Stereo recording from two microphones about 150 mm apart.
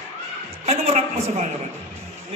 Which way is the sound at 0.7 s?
45° right (ahead or behind).